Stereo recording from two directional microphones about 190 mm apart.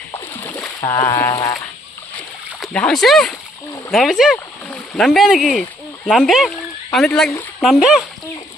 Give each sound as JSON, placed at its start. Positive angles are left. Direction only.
{"t": 0.4, "sound": "splash", "side_deg": 10}
{"t": 0.9, "sound": "a sound", "side_deg": 15}
{"t": 2.6, "sound": "speech", "side_deg": 5}